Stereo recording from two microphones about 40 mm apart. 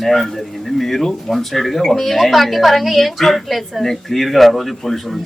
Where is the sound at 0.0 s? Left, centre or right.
Centre.